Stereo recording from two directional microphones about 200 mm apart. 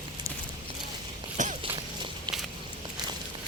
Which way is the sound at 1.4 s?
40° right (ahead or behind).